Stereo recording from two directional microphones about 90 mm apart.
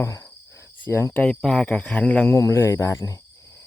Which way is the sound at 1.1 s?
10° left (ahead or behind).